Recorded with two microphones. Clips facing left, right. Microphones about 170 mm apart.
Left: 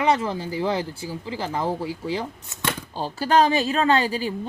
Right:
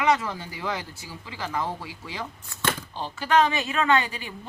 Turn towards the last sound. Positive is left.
turn(degrees=35)  # may be behind; listen again after turning